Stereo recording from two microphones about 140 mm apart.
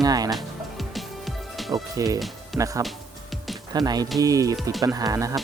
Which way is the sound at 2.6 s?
15° right (ahead or behind).